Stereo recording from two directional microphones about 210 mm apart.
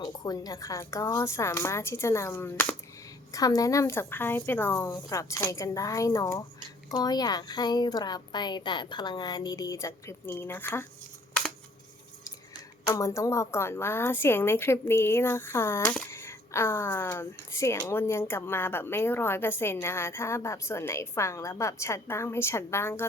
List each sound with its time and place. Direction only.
0.0 s a woman's voice: 20° left (ahead or behind)
12.8 s a woman's voice: 15° left (ahead or behind)